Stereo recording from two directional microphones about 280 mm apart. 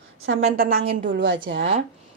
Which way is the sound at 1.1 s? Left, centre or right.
Right.